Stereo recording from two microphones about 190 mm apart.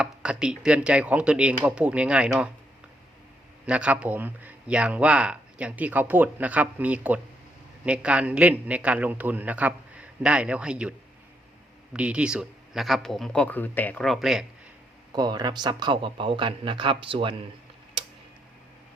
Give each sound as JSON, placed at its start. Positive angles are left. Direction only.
{"t": 0.0, "sound": "speech", "side_deg": -5}
{"t": 3.7, "sound": "speech", "side_deg": -5}
{"t": 11.9, "sound": "speech", "side_deg": -5}
{"t": 15.1, "sound": "speech", "side_deg": -20}
{"t": 18.0, "sound": "tick-tock", "side_deg": -25}